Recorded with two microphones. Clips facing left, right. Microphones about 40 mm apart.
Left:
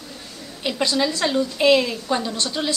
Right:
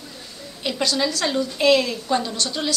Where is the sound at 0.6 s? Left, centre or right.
Centre.